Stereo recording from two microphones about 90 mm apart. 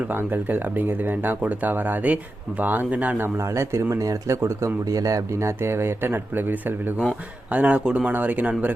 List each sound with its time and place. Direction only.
0.1 s speech: 20° right (ahead or behind)